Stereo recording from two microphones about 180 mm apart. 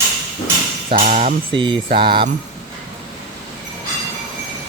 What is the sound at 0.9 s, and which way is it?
Speech, 40° right (ahead or behind).